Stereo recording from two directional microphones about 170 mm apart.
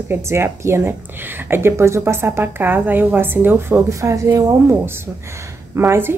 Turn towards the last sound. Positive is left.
turn(degrees=-15)  # may be behind; listen again after turning